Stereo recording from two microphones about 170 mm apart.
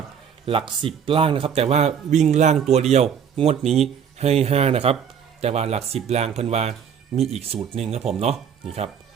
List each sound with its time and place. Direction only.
0.4 s speech: 30° right (ahead or behind)